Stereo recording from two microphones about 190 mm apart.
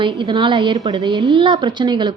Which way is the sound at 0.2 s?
25° right (ahead or behind).